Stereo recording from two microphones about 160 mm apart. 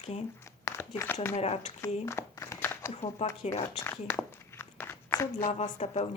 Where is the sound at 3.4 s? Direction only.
45° left (ahead or behind).